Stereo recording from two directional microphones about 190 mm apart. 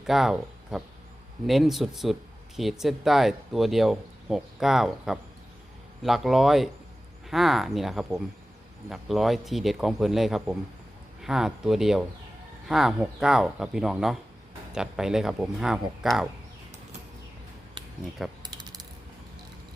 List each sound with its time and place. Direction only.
0.0 s speech: centre (ahead or behind)
18.4 s coin: 20° right (ahead or behind)